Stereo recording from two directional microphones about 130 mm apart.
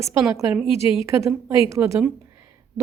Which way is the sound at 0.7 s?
50° left (ahead or behind).